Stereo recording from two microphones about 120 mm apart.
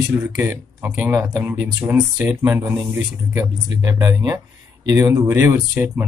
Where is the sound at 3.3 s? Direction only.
30° right (ahead or behind).